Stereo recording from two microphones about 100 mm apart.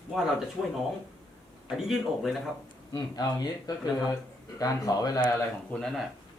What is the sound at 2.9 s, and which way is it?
Speech, 40° left (ahead or behind).